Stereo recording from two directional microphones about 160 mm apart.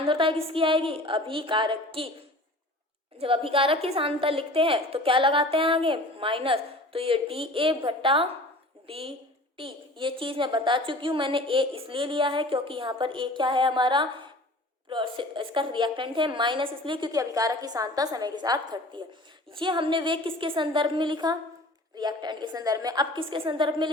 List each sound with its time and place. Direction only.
0.0 s a woman's voice: 35° right (ahead or behind)
3.2 s a woman's voice: 35° right (ahead or behind)